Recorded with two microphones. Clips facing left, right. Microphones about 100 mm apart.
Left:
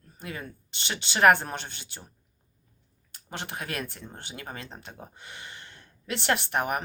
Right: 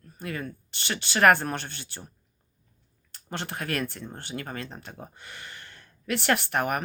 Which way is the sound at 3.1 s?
15° left (ahead or behind).